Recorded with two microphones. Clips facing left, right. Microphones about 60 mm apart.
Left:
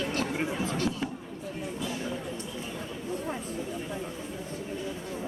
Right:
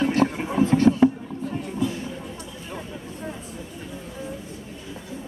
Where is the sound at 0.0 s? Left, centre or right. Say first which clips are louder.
Right 8 dB; right.